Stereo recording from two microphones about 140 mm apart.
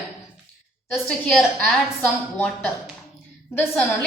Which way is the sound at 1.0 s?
5° left (ahead or behind).